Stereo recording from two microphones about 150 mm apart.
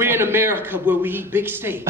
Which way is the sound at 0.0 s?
15° right (ahead or behind).